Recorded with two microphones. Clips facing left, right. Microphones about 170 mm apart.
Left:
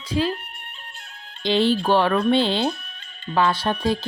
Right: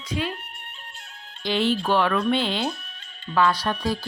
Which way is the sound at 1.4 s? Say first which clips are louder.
Left 4 dB; 30° left (ahead or behind).